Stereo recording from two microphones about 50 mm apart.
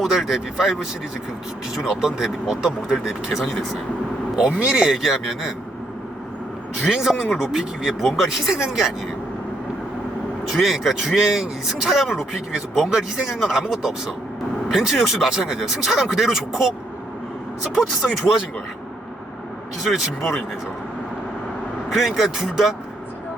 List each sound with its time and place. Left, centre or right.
0.0 s speech: centre
3.4 s a man's voice: centre
4.4 s speech: centre
6.8 s speech: centre
10.5 s a man's voice: centre
17.7 s a man's voice: centre
19.8 s a man's voice: centre
21.8 s a man's voice: centre